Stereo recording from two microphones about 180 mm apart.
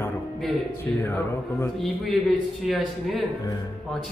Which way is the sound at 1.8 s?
Centre (ahead or behind).